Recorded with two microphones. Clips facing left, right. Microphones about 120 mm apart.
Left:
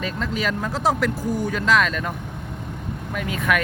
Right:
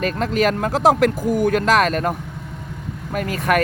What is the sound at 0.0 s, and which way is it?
Speech, 55° right (ahead or behind).